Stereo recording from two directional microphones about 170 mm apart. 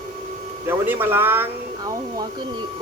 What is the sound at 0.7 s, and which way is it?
Speech, 10° right (ahead or behind).